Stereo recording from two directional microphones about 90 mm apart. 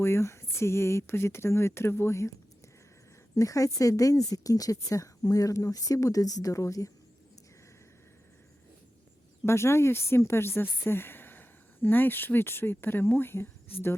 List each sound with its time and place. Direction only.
0.0 s speech: 30° left (ahead or behind)
3.3 s a woman's voice: 40° left (ahead or behind)
9.5 s speech: 30° left (ahead or behind)